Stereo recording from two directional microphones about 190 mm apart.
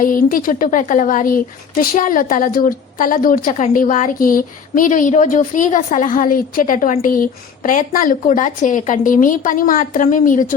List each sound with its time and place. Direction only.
0.0 s a woman's voice: 45° left (ahead or behind)